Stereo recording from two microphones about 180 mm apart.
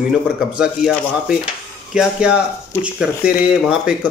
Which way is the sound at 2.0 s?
5° right (ahead or behind).